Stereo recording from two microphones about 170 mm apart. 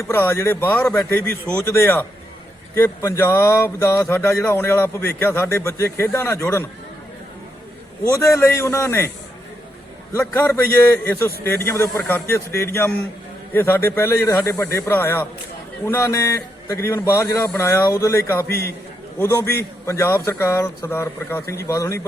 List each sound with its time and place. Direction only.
0.0 s speech: 15° left (ahead or behind)
8.2 s speech: 15° left (ahead or behind)
10.1 s speech: 15° left (ahead or behind)